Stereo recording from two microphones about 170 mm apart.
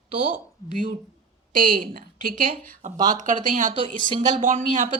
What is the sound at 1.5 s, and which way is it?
A woman's voice, 55° right (ahead or behind).